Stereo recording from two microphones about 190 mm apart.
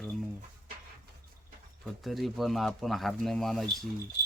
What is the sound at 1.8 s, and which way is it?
Speech, centre (ahead or behind).